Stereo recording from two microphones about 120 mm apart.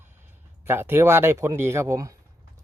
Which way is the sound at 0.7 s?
20° right (ahead or behind).